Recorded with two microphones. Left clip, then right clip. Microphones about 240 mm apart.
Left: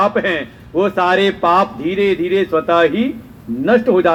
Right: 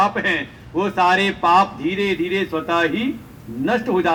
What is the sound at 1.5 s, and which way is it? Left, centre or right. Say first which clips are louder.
Speech: right 2 dB; right.